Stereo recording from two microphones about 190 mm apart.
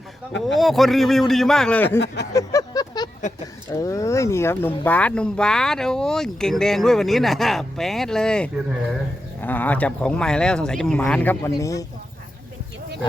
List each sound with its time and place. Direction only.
0.4 s speech: centre (ahead or behind)
2.3 s a sound: 20° left (ahead or behind)
3.4 s speech: 20° left (ahead or behind)